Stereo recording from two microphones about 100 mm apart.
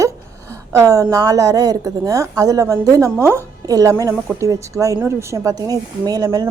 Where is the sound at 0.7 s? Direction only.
35° right (ahead or behind).